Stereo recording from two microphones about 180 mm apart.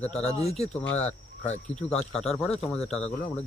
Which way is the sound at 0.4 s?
35° left (ahead or behind).